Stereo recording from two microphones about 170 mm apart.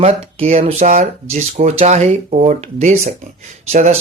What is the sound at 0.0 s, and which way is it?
Speech, 35° right (ahead or behind).